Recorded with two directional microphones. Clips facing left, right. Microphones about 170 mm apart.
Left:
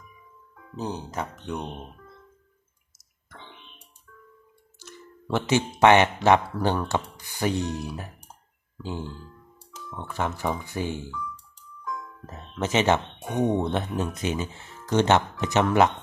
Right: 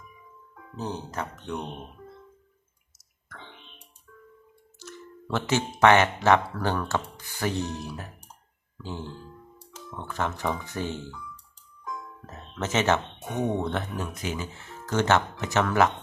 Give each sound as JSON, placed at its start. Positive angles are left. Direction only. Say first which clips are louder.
{"t": 0.8, "sound": "speech", "louder": "left 2 dB", "side_deg": 10}
{"t": 4.9, "sound": "music", "louder": "left 3 dB", "side_deg": 15}
{"t": 5.8, "sound": "speech", "louder": "left 2 dB", "side_deg": 15}
{"t": 12.2, "sound": "speech", "louder": "left 3 dB", "side_deg": 15}